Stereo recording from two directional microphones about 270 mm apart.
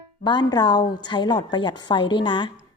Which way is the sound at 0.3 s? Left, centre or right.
Centre.